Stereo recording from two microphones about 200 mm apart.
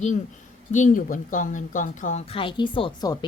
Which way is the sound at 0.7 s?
40° left (ahead or behind).